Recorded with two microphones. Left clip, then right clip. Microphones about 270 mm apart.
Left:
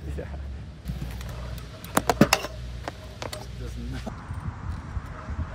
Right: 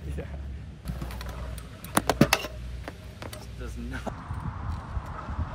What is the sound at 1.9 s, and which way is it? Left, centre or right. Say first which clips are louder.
Computer keyboard: left 2 dB; centre.